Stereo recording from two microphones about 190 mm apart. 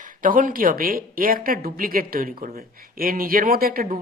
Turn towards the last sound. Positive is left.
turn(degrees=-50)  # may be behind; listen again after turning